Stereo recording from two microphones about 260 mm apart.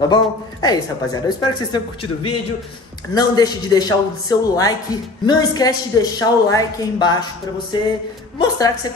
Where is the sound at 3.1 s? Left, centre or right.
Centre.